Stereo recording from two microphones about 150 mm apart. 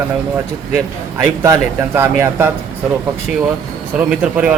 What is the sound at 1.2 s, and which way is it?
Speech, 20° right (ahead or behind).